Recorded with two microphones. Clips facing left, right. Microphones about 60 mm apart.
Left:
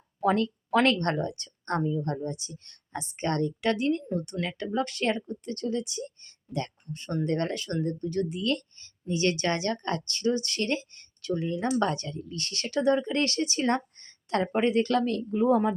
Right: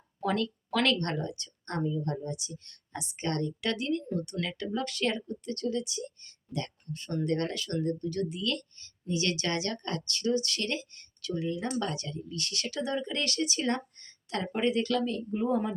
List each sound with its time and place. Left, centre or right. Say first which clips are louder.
0.2 s speech: left 5 dB; left
15.0 s speech: left 5 dB; left